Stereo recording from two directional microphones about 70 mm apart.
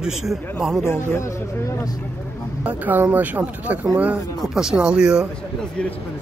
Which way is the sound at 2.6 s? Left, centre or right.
Right.